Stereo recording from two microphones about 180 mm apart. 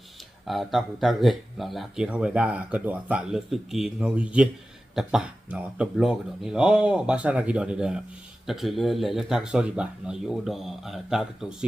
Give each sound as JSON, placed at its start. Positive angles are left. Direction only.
{"t": 0.4, "sound": "speech", "side_deg": 0}